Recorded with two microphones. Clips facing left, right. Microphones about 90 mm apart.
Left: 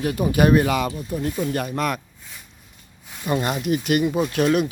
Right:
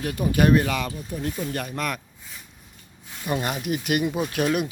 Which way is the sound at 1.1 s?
5° left (ahead or behind).